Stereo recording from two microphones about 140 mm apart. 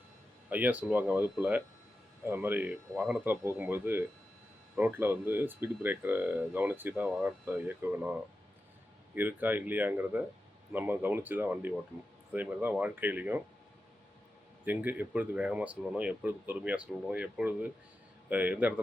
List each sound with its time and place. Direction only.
0.5 s speech: 10° right (ahead or behind)
14.6 s speech: 15° right (ahead or behind)